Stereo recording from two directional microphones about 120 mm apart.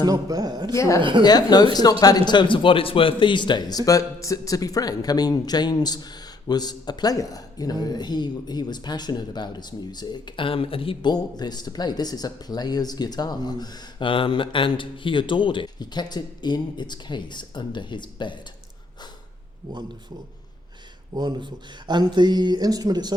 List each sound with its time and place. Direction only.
0.0 s speech: 30° right (ahead or behind)
0.8 s a woman's voice: 25° left (ahead or behind); by 11.1 s 50° left (ahead or behind)
11.1 s speech: 35° left (ahead or behind)
21.2 s speech: 40° right (ahead or behind)